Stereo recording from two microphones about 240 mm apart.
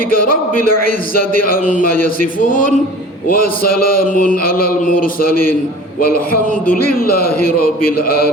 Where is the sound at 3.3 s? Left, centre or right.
Left.